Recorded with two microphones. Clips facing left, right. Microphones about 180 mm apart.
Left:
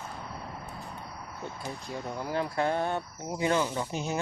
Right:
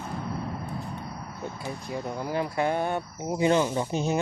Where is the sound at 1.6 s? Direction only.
10° right (ahead or behind).